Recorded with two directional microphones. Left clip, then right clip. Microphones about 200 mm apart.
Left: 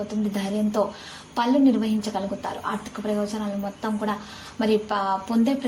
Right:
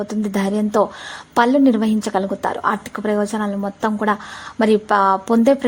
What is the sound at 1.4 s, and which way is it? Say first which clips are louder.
A woman's voice: right 6 dB; 45° right (ahead or behind).